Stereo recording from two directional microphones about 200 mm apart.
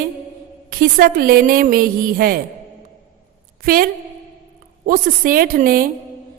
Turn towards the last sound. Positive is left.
turn(degrees=-45)  # may be behind; listen again after turning